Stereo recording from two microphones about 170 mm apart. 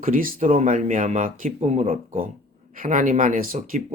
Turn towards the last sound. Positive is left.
turn(degrees=-55)  # may be behind; listen again after turning